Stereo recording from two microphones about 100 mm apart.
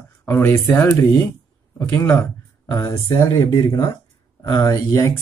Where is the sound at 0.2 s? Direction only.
20° left (ahead or behind).